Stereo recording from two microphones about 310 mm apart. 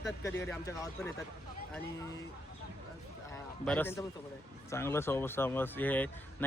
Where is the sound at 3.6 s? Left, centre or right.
Centre.